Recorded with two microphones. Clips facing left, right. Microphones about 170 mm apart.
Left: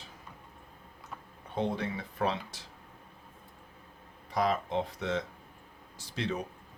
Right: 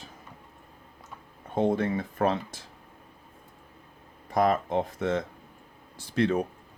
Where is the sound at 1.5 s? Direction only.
50° right (ahead or behind).